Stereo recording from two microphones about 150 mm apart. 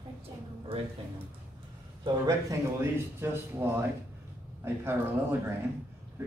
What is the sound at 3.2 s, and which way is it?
Speech, 15° right (ahead or behind).